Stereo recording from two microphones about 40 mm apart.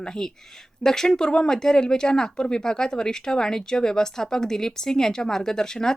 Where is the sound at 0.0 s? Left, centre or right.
Centre.